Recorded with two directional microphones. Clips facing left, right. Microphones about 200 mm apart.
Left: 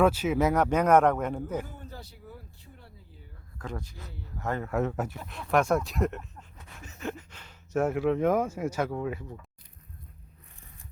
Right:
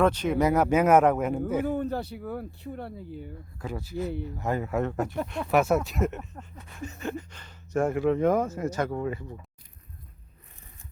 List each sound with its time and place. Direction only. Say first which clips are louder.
0.0 s speech: right 1 dB; 5° left (ahead or behind)
1.6 s speech: right 17 dB; 65° right (ahead or behind)
3.6 s speech: right 7 dB; 5° right (ahead or behind)